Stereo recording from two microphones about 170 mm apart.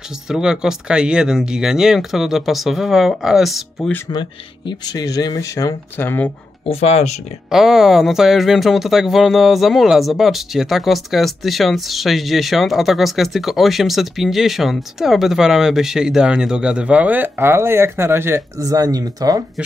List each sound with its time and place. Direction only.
0.3 s speech: 5° right (ahead or behind)
4.1 s speech: 25° left (ahead or behind)
6.6 s speech: 35° left (ahead or behind)
7.4 s speech: centre (ahead or behind); by 19.4 s 20° right (ahead or behind)